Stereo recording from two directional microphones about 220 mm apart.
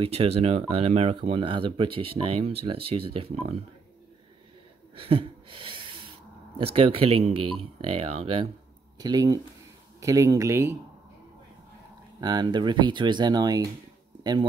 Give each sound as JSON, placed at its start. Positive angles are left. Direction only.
{"t": 0.0, "sound": "speech", "side_deg": -25}
{"t": 4.9, "sound": "a sound", "side_deg": -25}
{"t": 6.6, "sound": "speech", "side_deg": -25}
{"t": 8.9, "sound": "speech", "side_deg": -15}
{"t": 12.2, "sound": "speech", "side_deg": -20}